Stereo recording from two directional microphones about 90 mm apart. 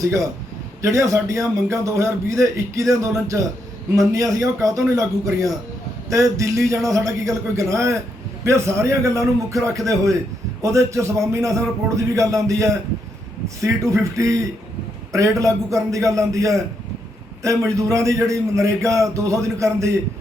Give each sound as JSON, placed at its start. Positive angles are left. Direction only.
{"t": 0.8, "sound": "a man's voice", "side_deg": -35}